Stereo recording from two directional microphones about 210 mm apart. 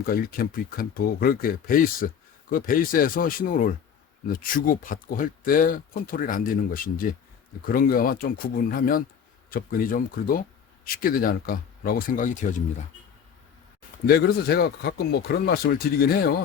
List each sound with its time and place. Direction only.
0.0 s speech: 45° left (ahead or behind)
14.1 s speech: 50° left (ahead or behind)